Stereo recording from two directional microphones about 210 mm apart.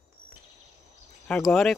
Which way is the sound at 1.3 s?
Centre (ahead or behind).